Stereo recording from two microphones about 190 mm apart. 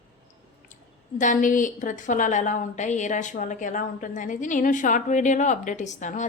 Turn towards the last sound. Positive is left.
turn(degrees=40)  # may be behind; listen again after turning